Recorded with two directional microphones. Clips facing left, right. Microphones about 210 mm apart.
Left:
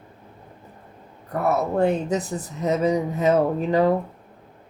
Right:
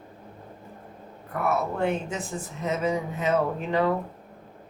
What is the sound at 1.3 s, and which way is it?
Speech, 40° left (ahead or behind).